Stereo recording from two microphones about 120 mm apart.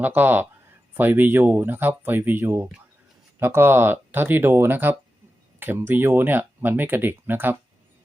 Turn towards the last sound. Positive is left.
turn(degrees=-15)  # may be behind; listen again after turning